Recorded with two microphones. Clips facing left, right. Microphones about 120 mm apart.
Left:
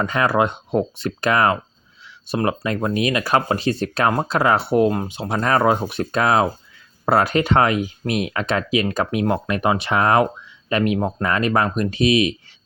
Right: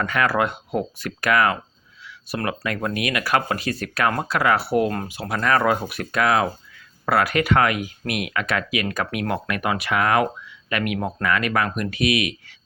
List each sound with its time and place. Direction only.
0.0 s speech: 25° left (ahead or behind)